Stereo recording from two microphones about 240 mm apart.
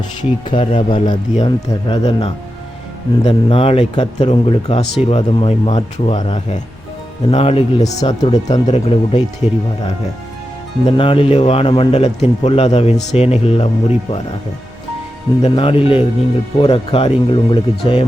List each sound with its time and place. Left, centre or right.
0.2 s a man's voice: centre
10.8 s a man's voice: left
15.4 s a man's voice: left